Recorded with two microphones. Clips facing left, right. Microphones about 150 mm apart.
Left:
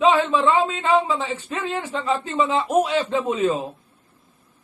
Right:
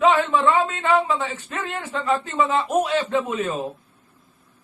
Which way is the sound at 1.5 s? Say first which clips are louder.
Left 3 dB; 20° left (ahead or behind).